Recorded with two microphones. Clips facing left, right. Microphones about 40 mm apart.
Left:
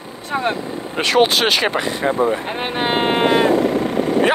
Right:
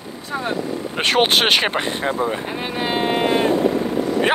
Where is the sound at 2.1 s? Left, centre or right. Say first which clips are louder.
Left 4 dB; left.